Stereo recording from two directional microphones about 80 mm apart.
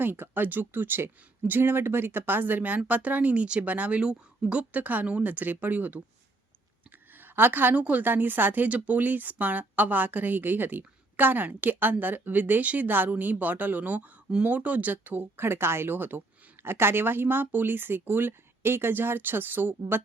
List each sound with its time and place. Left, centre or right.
0.0 s a woman's voice: right
7.2 s a woman's voice: right